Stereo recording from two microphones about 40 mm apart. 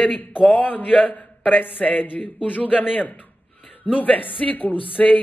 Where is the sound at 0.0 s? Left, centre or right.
Left.